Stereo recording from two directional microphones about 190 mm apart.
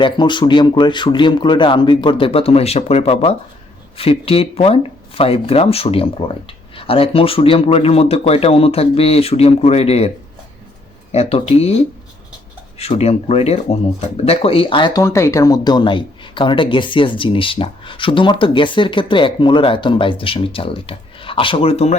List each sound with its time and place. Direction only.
0.0 s speech: 25° left (ahead or behind)
11.1 s speech: 30° left (ahead or behind)
12.8 s speech: 35° left (ahead or behind)